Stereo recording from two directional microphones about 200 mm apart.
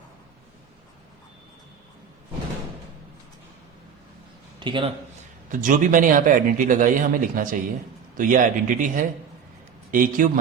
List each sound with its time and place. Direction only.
4.6 s a man's voice: 25° right (ahead or behind)
5.5 s a man's voice: 40° right (ahead or behind)